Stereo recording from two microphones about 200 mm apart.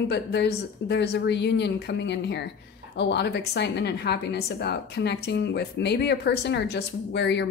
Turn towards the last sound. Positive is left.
turn(degrees=60)  # may be behind; listen again after turning